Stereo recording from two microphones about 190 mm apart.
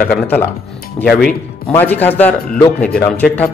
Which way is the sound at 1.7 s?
10° left (ahead or behind).